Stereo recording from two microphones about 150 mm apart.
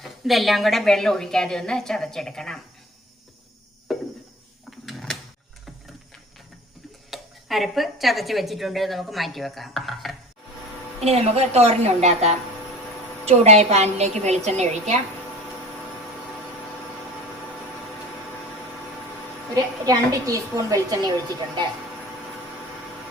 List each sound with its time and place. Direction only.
0.0 s a woman's voice: centre (ahead or behind)
3.9 s a sound: centre (ahead or behind)
7.1 s a woman's voice: centre (ahead or behind)
11.0 s a woman's voice: 45° right (ahead or behind)
19.5 s a woman's voice: 20° right (ahead or behind)